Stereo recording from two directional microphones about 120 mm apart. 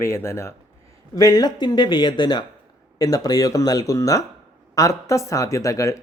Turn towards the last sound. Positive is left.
turn(degrees=25)  # may be behind; listen again after turning